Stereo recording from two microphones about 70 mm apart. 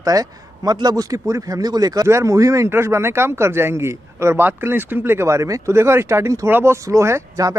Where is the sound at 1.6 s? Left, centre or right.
Right.